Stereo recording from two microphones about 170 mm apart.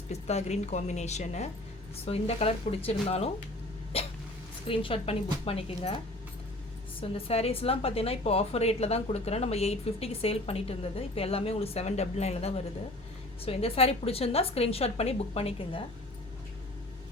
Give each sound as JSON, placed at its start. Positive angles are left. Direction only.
{"t": 0.1, "sound": "a woman's voice", "side_deg": 40}
{"t": 3.9, "sound": "hiccup", "side_deg": 35}
{"t": 4.6, "sound": "a woman's voice", "side_deg": 35}
{"t": 7.0, "sound": "a woman's voice", "side_deg": 35}